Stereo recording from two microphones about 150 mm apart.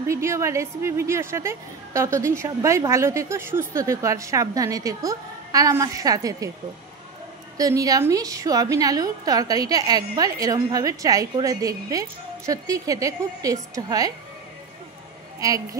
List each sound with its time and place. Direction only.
0.0 s a woman's voice: 20° right (ahead or behind)
7.5 s a woman's voice: 25° right (ahead or behind)
15.4 s a woman's voice: 20° right (ahead or behind)